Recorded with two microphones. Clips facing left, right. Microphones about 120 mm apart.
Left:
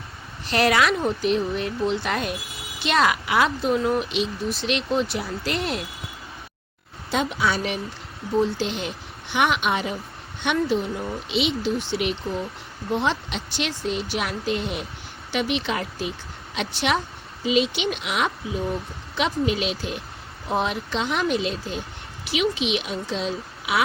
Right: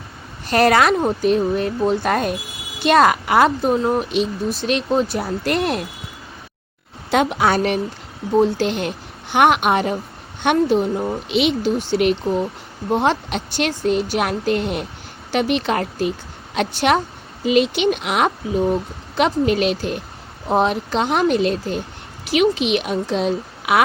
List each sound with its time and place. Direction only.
0.4 s speech: 45° right (ahead or behind)
7.1 s a woman's voice: 65° right (ahead or behind)
11.8 s speech: 45° right (ahead or behind)
12.2 s speech: 35° right (ahead or behind)
12.9 s speech: 50° right (ahead or behind)
20.5 s speech: 40° right (ahead or behind); by 23.8 s 55° right (ahead or behind)